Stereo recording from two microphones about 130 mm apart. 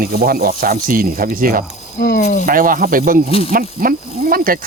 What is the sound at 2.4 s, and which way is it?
Speech, 90° right.